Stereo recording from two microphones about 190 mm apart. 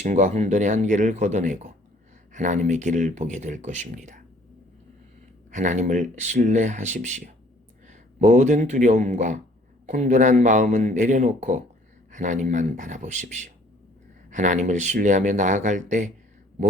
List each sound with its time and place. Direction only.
0.0 s speech: 40° right (ahead or behind)
5.5 s speech: 40° right (ahead or behind)